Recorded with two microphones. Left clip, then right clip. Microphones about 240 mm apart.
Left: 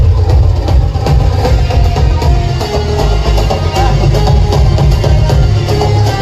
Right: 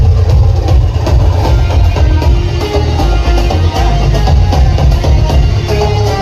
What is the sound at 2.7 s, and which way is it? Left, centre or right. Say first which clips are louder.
Music: even; left.